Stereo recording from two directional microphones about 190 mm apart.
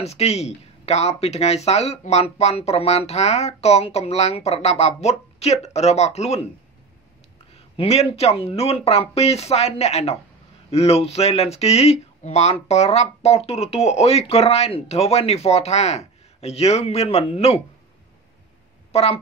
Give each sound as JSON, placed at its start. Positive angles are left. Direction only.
{"t": 0.0, "sound": "speech", "side_deg": 35}
{"t": 7.5, "sound": "speech", "side_deg": 30}
{"t": 18.9, "sound": "speech", "side_deg": 35}